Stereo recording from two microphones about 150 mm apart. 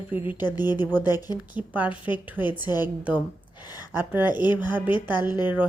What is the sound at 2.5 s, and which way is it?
Speech, 30° left (ahead or behind).